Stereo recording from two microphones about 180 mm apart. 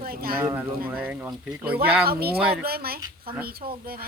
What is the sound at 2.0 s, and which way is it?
Speech, 60° right (ahead or behind).